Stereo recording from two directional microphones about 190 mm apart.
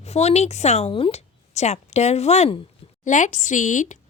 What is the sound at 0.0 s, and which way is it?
A woman's voice, 35° left (ahead or behind).